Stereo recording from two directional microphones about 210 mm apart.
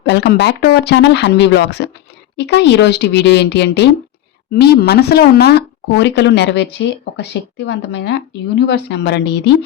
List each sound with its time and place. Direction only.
0.0 s speech: 55° left (ahead or behind)